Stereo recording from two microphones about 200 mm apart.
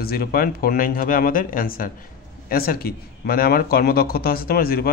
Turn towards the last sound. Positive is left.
turn(degrees=50)  # may be behind; listen again after turning